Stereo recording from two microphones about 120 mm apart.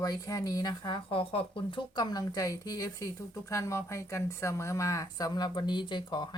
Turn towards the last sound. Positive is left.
turn(degrees=40)  # may be behind; listen again after turning